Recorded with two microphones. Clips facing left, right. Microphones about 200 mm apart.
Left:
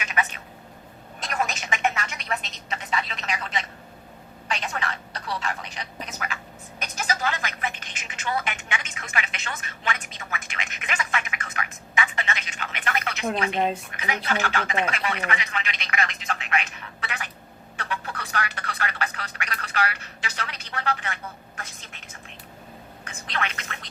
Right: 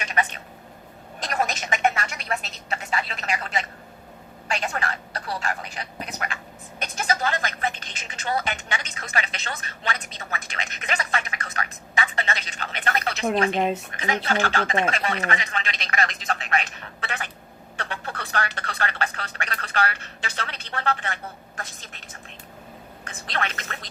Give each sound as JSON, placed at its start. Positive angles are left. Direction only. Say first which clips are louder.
{"t": 0.0, "sound": "a sound", "louder": "right 2 dB", "side_deg": -35}
{"t": 3.1, "sound": "a woman's voice", "louder": "right 2 dB", "side_deg": -40}
{"t": 4.6, "sound": "a woman's voice", "louder": "right 2 dB", "side_deg": -40}
{"t": 6.1, "sound": "a woman's voice", "louder": "right 1 dB", "side_deg": -35}
{"t": 23.0, "sound": "a woman's voice", "louder": "right 1 dB", "side_deg": -35}